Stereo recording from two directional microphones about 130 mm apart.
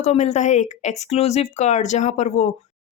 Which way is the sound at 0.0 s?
60° left (ahead or behind).